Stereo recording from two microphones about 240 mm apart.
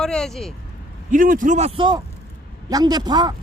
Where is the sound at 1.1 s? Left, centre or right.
Right; by 3.3 s centre.